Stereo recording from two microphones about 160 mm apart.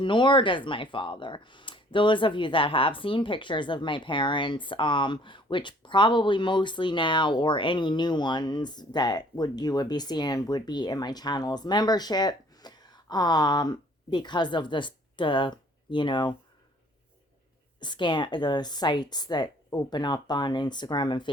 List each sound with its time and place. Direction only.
0.0 s speech: 30° left (ahead or behind)
17.7 s a woman's voice: 30° left (ahead or behind)